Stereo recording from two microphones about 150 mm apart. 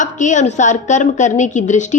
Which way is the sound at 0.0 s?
55° left (ahead or behind).